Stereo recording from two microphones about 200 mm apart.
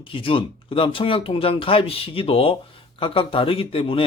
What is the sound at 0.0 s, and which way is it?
Speech, 25° left (ahead or behind).